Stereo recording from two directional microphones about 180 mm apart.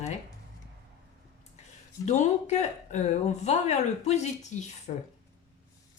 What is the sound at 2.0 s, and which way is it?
Speech, 40° left (ahead or behind).